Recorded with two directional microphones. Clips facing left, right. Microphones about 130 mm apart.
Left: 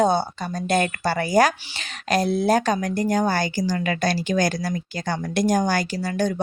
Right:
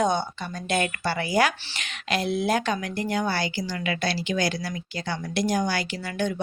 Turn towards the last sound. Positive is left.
turn(degrees=40)  # may be behind; listen again after turning